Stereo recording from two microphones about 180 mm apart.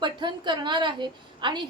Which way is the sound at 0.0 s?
25° right (ahead or behind).